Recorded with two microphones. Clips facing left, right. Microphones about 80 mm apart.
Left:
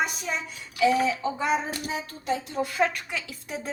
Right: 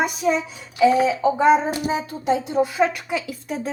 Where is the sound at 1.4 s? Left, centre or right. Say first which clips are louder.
Right 12 dB; right.